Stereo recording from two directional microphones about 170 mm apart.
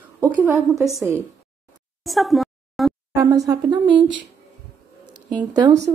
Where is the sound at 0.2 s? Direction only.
10° right (ahead or behind).